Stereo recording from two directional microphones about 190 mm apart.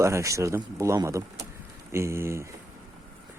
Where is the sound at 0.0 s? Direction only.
15° right (ahead or behind).